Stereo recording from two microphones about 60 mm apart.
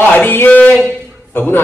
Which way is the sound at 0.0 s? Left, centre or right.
Left.